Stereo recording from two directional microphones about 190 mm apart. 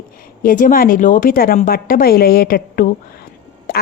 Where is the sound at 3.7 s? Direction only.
50° left (ahead or behind).